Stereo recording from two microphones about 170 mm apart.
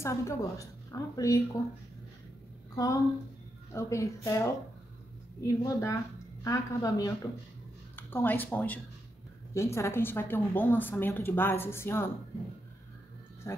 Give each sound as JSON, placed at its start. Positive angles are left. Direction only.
{"t": 0.0, "sound": "a woman's voice", "side_deg": 15}
{"t": 2.7, "sound": "a woman's voice", "side_deg": 20}
{"t": 13.5, "sound": "speech", "side_deg": 15}